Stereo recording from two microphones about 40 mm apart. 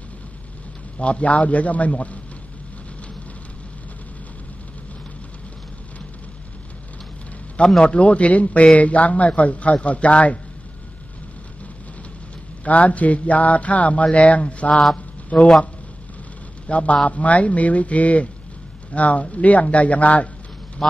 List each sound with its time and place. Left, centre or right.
0.9 s speech: left
7.8 s speech: left
12.6 s a man's voice: left
16.6 s speech: left